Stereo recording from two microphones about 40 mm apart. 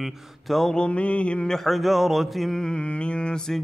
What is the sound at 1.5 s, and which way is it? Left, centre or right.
Speech, centre.